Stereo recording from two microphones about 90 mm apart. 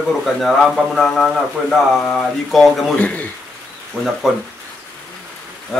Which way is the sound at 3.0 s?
15° left (ahead or behind).